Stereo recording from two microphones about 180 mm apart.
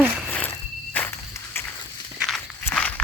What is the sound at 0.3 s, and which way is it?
Frog, 10° left (ahead or behind).